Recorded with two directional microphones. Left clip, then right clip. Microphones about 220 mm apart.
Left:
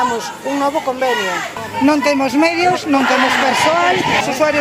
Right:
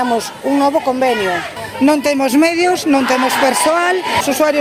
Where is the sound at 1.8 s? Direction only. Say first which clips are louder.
Right 1 dB; 50° right (ahead or behind).